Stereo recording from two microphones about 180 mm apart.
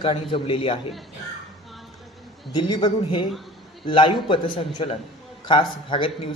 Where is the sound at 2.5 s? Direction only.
25° left (ahead or behind).